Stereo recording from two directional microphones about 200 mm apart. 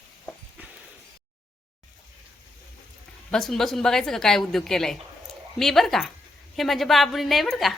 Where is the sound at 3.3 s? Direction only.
5° left (ahead or behind).